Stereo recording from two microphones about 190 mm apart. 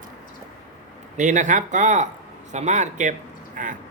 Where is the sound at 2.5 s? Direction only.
40° right (ahead or behind).